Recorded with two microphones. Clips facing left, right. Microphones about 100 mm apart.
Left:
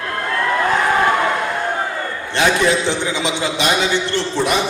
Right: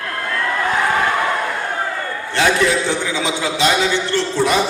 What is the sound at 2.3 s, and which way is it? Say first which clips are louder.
A man's voice: even; 20° left (ahead or behind).